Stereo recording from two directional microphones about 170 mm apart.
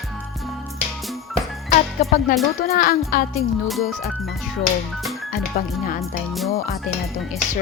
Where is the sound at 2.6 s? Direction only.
60° left (ahead or behind).